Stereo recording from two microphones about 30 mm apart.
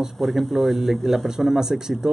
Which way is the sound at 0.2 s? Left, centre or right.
Centre.